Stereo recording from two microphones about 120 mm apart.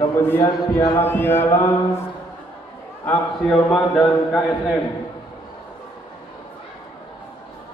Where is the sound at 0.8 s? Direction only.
20° left (ahead or behind).